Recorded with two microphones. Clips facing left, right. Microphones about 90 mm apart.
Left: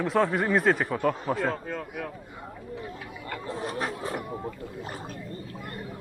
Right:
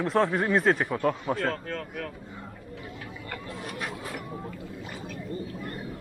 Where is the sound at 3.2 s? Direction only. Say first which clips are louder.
Left 6 dB; 30° left (ahead or behind).